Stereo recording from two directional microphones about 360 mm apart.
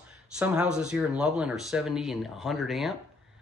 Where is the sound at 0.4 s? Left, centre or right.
Centre.